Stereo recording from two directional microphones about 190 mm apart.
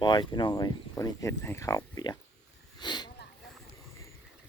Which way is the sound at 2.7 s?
25° left (ahead or behind).